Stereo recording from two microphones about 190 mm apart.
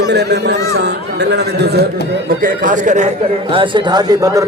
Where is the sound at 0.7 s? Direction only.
60° right (ahead or behind).